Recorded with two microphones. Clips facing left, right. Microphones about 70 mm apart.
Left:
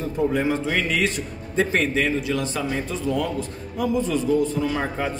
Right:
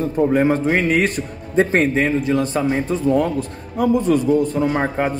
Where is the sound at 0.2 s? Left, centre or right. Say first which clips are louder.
Right 6 dB; right.